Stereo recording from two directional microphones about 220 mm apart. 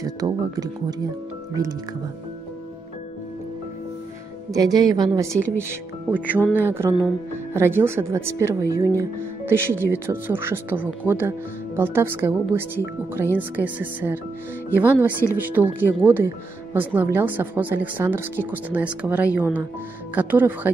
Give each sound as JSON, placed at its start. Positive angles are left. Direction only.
{"t": 0.0, "sound": "speech", "side_deg": -15}
{"t": 4.5, "sound": "speech", "side_deg": -15}